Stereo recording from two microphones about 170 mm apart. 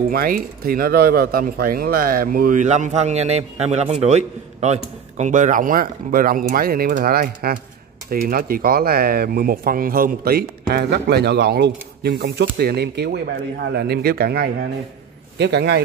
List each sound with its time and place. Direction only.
0.1 s speech: 60° right (ahead or behind)
10.7 s speech: 70° right (ahead or behind)
15.3 s a man's voice: 80° right